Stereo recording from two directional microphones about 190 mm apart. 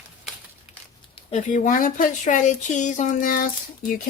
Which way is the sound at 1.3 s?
40° left (ahead or behind).